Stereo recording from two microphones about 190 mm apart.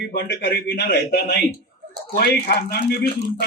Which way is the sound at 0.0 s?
60° left (ahead or behind).